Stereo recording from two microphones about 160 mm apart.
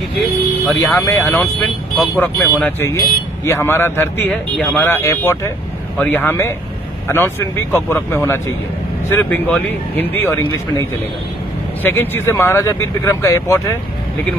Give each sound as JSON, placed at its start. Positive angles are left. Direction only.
{"t": 0.7, "sound": "speech", "side_deg": 15}
{"t": 11.8, "sound": "speech", "side_deg": 15}